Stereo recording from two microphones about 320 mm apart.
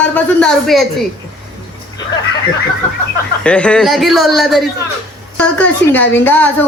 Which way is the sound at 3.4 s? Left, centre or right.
Centre.